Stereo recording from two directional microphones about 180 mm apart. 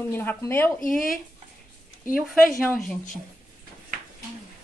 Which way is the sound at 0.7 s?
50° left (ahead or behind).